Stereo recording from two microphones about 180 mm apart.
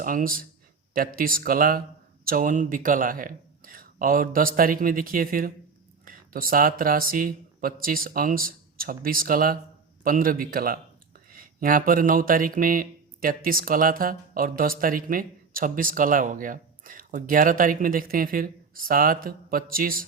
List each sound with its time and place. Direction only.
0.0 s speech: 50° right (ahead or behind)